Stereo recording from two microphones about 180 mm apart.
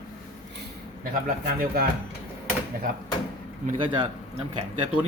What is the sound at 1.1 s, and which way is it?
Speech, 55° right (ahead or behind).